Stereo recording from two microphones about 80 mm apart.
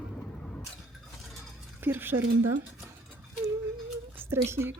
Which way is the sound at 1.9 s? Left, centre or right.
Right.